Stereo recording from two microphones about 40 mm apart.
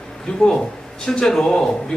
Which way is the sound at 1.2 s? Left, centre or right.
Centre.